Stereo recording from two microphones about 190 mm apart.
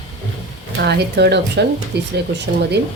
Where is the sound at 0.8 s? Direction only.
60° right (ahead or behind).